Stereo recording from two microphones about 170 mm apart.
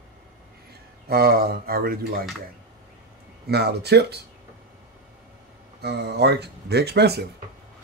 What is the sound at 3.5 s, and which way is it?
Speech, 70° right (ahead or behind).